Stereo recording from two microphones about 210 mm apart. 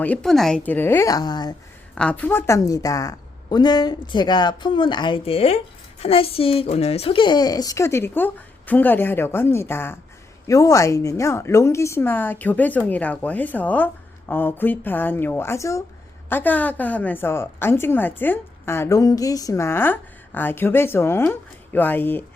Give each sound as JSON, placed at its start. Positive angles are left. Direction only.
{"t": 0.0, "sound": "a woman's voice", "side_deg": 5}
{"t": 2.0, "sound": "a woman's voice", "side_deg": 5}